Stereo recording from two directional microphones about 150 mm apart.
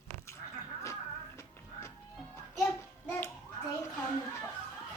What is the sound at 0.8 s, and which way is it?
Music, 20° left (ahead or behind).